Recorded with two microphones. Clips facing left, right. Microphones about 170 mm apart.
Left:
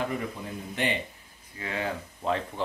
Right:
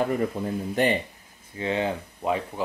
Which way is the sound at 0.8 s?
40° right (ahead or behind).